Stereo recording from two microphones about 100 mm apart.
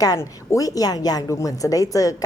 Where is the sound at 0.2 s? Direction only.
35° left (ahead or behind).